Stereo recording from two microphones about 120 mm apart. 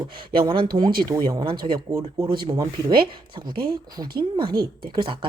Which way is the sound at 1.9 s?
25° right (ahead or behind).